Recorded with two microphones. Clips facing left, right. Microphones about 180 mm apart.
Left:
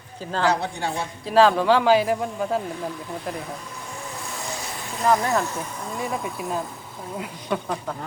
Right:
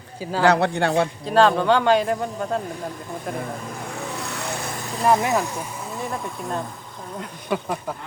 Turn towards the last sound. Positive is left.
turn(degrees=-5)  # may be behind; listen again after turning